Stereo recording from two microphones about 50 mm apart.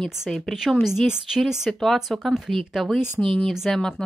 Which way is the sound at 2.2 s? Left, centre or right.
Centre.